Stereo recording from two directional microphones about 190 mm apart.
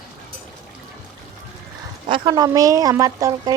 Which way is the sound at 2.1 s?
25° right (ahead or behind).